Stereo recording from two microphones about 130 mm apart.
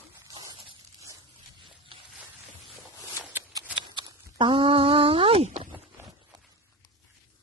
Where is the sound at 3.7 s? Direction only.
35° right (ahead or behind).